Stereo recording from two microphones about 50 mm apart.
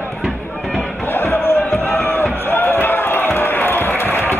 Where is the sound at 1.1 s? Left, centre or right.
Left.